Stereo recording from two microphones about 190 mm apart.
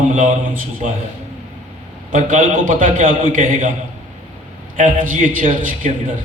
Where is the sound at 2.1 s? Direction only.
45° right (ahead or behind).